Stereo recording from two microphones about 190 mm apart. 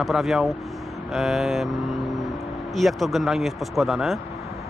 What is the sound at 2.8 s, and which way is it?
Speech, centre (ahead or behind).